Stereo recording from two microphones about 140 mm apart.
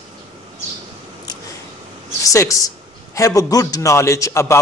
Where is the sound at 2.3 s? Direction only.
20° left (ahead or behind).